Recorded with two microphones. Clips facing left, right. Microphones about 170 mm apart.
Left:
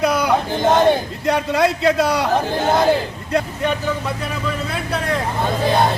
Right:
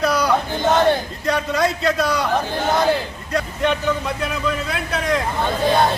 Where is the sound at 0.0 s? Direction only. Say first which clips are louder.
Left 1 dB; 20° left (ahead or behind).